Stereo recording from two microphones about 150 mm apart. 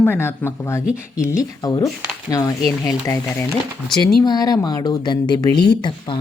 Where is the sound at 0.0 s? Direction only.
15° left (ahead or behind).